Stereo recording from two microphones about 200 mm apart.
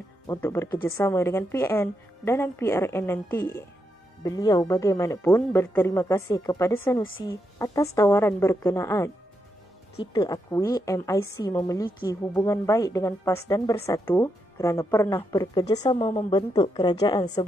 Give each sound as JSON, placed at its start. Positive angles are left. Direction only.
{"t": 0.3, "sound": "a woman's voice", "side_deg": 10}